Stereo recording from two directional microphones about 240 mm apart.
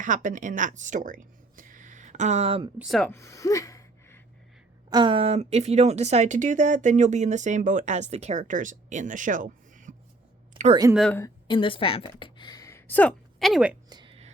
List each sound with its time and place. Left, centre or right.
0.0 s speech: right
2.7 s speech: centre
4.9 s a woman's voice: centre
10.9 s speech: centre
11.2 s a woman's voice: centre
13.9 s a sound: right